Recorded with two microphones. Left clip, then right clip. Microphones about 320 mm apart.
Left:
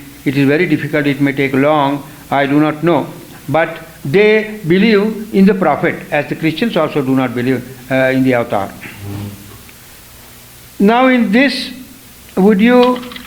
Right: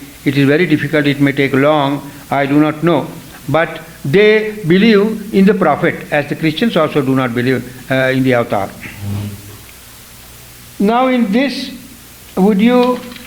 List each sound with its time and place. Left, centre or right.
0.3 s a man's voice: right
4.1 s a man's voice: right
10.8 s a man's voice: centre